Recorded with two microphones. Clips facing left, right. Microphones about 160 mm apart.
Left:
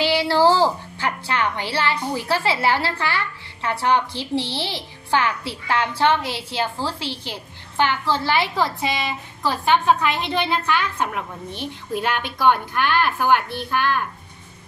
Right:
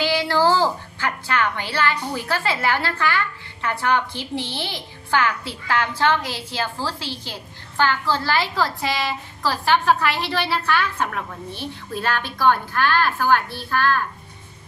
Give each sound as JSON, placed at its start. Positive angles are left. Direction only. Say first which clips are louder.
{"t": 0.0, "sound": "a woman's voice", "louder": "left 2 dB", "side_deg": 25}